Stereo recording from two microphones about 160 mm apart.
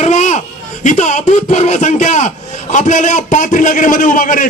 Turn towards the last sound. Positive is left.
turn(degrees=55)  # may be behind; listen again after turning